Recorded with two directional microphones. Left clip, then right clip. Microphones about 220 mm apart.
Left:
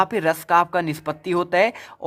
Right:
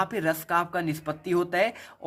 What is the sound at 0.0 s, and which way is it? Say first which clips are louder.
Speech: left 7 dB; 35° left (ahead or behind).